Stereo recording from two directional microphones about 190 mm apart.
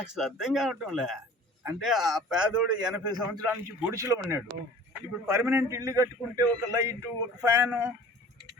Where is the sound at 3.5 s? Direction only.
10° right (ahead or behind).